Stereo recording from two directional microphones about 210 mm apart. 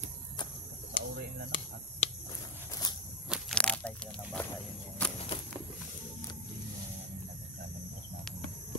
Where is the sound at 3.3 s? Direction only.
5° left (ahead or behind).